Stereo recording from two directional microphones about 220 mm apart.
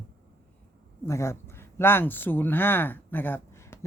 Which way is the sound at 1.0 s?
10° left (ahead or behind).